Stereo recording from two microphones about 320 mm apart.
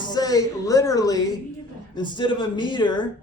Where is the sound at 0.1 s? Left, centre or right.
Centre.